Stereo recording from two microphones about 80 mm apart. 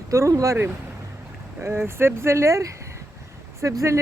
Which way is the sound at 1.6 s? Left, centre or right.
Right.